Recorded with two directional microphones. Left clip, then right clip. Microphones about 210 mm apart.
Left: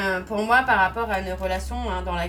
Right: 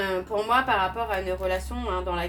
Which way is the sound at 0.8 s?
25° right (ahead or behind).